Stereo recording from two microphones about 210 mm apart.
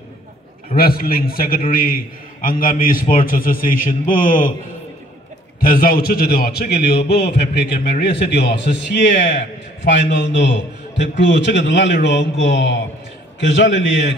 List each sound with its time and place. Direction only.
0.7 s a man's voice: 45° left (ahead or behind)
5.6 s a man's voice: 45° left (ahead or behind); by 14.1 s 60° left (ahead or behind)